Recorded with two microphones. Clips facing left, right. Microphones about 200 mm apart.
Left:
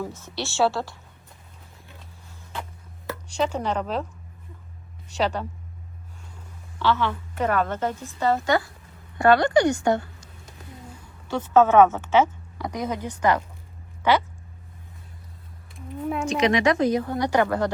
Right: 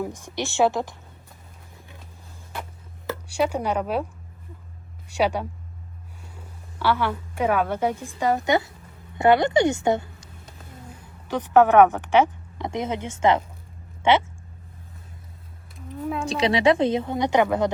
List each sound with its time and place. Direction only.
0.0 s a woman's voice: 15° right (ahead or behind)
3.1 s speech: 10° right (ahead or behind)
5.0 s a woman's voice: 10° right (ahead or behind)
6.7 s a woman's voice: 10° right (ahead or behind)
11.3 s a woman's voice: 15° right (ahead or behind)
15.7 s a sound: centre (ahead or behind)
16.2 s a woman's voice: 35° right (ahead or behind)